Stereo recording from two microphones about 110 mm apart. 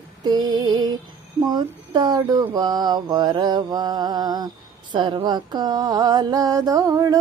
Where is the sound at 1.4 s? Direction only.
40° right (ahead or behind).